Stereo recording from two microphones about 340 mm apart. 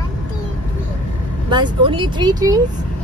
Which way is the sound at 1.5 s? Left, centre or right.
Centre.